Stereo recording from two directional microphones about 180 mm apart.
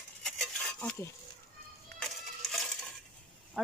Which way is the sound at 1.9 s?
Centre (ahead or behind).